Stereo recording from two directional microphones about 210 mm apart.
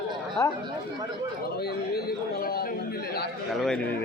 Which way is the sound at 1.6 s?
50° left (ahead or behind).